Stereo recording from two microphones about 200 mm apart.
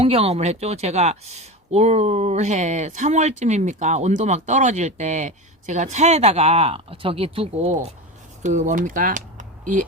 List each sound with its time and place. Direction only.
0.0 s speech: 30° right (ahead or behind)